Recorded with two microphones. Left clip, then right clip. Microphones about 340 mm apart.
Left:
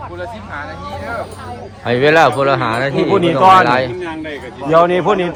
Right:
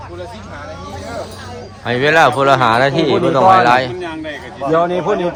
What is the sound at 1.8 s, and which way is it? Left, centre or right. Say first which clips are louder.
Speech: left 1 dB; centre.